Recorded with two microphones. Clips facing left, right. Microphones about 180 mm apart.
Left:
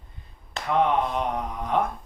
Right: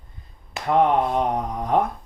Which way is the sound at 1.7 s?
40° right (ahead or behind).